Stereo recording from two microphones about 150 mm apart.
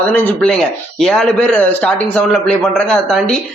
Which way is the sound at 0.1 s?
10° left (ahead or behind).